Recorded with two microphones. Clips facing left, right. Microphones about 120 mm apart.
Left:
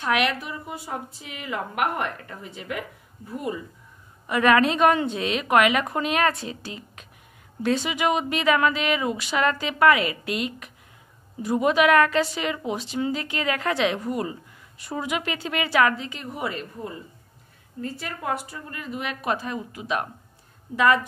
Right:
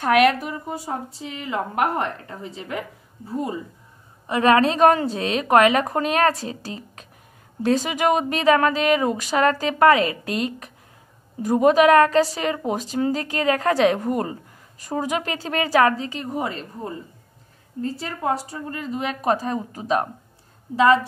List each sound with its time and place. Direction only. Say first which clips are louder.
0.0 s a woman's voice: right 7 dB; 45° right (ahead or behind); by 21.0 s 30° right (ahead or behind)